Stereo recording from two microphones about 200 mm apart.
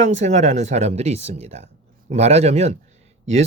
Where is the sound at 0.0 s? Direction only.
35° right (ahead or behind).